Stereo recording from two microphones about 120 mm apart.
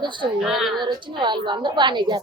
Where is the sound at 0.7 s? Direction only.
40° right (ahead or behind).